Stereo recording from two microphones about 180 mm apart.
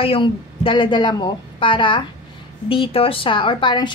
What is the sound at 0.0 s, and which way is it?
A woman's voice, 30° left (ahead or behind).